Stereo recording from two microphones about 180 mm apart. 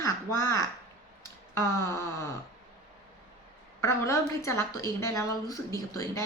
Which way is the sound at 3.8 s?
15° left (ahead or behind).